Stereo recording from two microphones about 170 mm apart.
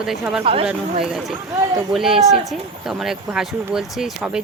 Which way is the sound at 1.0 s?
Centre (ahead or behind).